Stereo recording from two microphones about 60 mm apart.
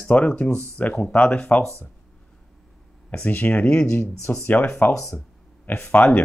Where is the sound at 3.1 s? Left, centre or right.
Left.